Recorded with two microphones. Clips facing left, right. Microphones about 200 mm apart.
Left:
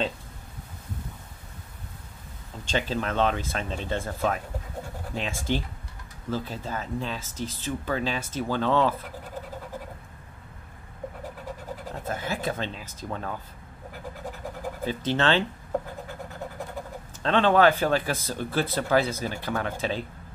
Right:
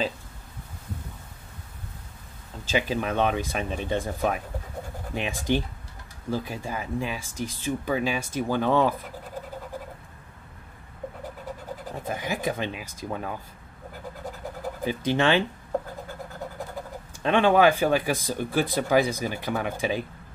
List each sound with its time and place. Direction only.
2.6 s speech: 10° right (ahead or behind)
11.9 s speech: 15° right (ahead or behind)
14.9 s speech: 15° right (ahead or behind)
17.2 s speech: 15° right (ahead or behind)